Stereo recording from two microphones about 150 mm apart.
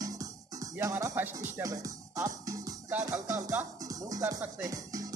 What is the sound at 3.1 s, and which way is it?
Music, 20° right (ahead or behind).